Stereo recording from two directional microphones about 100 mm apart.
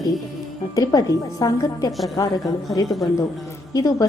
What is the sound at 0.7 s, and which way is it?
A woman's voice, 35° left (ahead or behind).